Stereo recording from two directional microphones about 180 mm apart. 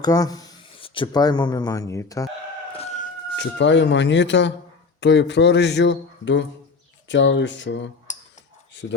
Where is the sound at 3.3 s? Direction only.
90° left.